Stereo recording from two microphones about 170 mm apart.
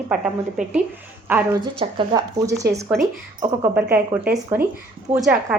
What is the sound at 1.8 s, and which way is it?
A woman's voice, 25° right (ahead or behind).